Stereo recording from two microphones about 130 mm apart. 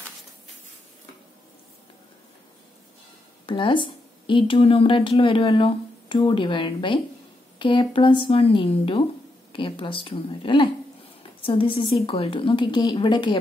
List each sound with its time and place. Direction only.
3.4 s a woman's voice: 40° left (ahead or behind)